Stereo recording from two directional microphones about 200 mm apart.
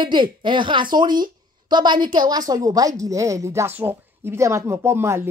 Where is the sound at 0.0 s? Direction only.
25° right (ahead or behind).